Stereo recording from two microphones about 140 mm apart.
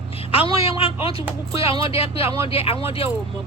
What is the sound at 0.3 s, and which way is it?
Speech, 45° left (ahead or behind).